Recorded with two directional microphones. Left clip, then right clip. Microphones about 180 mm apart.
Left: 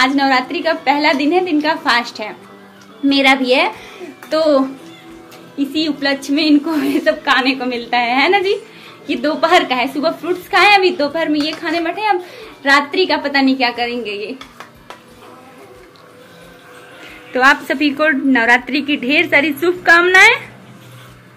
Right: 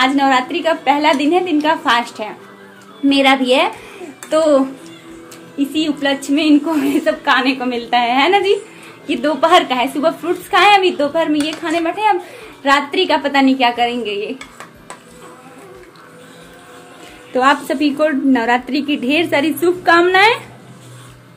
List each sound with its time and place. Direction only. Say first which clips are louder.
0.0 s a woman's voice: even; 10° right (ahead or behind)
17.3 s a woman's voice: left 2 dB; 15° right (ahead or behind)